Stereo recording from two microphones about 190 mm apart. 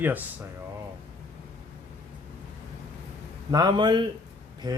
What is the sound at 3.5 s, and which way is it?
Speech, 20° right (ahead or behind).